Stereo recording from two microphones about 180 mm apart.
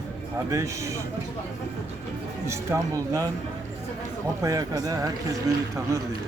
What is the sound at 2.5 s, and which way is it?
Speech, 15° right (ahead or behind).